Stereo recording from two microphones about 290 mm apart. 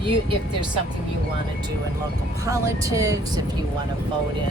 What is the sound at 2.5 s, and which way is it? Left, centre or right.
Speech, centre.